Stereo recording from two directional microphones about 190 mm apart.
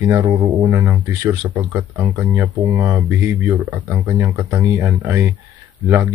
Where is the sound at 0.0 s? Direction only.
15° right (ahead or behind).